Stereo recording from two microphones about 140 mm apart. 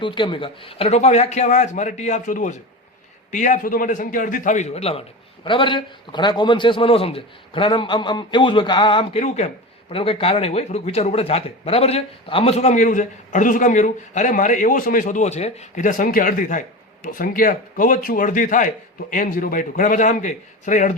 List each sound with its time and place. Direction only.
0.0 s a man's voice: 35° left (ahead or behind); by 9.5 s 50° left (ahead or behind)
9.9 s speech: 40° left (ahead or behind); by 18.7 s 70° left (ahead or behind)
19.1 s a man's voice: 85° left; by 20.9 s 65° left (ahead or behind)